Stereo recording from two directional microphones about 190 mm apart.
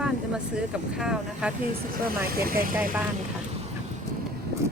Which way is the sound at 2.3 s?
50° right (ahead or behind).